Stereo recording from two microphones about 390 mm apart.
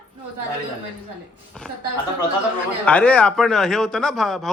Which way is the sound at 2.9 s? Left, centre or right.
Centre.